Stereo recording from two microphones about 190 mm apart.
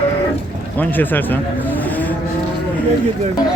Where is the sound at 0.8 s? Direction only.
10° left (ahead or behind).